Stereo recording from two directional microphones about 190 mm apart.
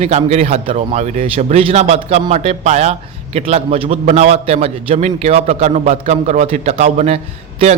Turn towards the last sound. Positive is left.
turn(degrees=-35)  # may be behind; listen again after turning